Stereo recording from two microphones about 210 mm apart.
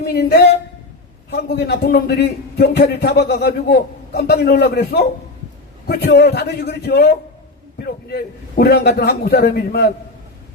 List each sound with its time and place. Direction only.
0.0 s a man's voice: 50° left (ahead or behind)